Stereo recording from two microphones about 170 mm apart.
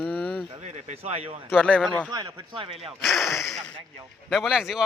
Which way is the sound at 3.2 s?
15° left (ahead or behind).